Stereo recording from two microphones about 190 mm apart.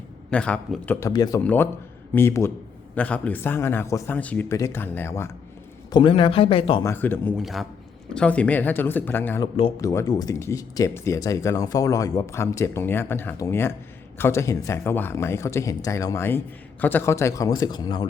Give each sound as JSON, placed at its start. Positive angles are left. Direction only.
{"t": 0.3, "sound": "speech", "side_deg": 5}
{"t": 5.9, "sound": "speech", "side_deg": 25}
{"t": 6.8, "sound": "speech", "side_deg": 10}
{"t": 7.4, "sound": "a man's voice", "side_deg": 0}